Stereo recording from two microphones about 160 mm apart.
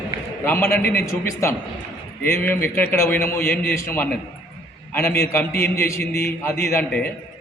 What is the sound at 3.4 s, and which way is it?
Speech, 75° left (ahead or behind).